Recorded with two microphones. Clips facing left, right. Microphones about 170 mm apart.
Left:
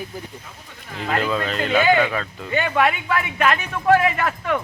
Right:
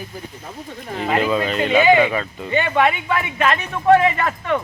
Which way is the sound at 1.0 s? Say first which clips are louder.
Right 3 dB; 5° right (ahead or behind).